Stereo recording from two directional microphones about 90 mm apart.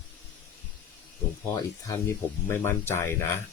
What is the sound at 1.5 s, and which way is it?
Speech, 30° left (ahead or behind).